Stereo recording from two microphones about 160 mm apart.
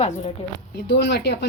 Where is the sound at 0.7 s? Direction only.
85° left.